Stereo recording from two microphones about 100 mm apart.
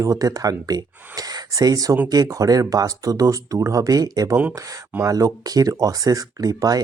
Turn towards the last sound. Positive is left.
turn(degrees=-40)  # may be behind; listen again after turning